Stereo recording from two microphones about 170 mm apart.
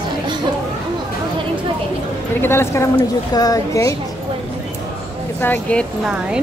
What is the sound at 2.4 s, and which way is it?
A woman's voice, 15° left (ahead or behind).